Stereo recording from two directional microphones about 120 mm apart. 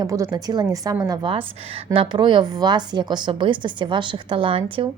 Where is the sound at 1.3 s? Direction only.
50° right (ahead or behind).